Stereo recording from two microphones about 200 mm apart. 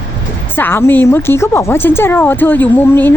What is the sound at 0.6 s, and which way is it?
Speech, 10° left (ahead or behind).